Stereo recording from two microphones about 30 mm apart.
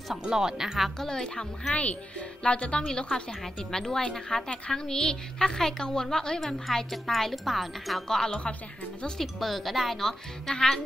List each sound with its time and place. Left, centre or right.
0.3 s speech: centre
0.9 s speech: left
1.7 s speech: left
2.1 s speech: left
3.3 s speech: centre
8.1 s speech: centre
9.2 s speech: centre
9.9 s speech: centre